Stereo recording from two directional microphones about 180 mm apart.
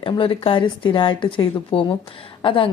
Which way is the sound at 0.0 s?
30° left (ahead or behind).